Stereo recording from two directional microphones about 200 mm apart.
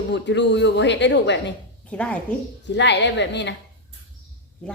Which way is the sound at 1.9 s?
5° left (ahead or behind).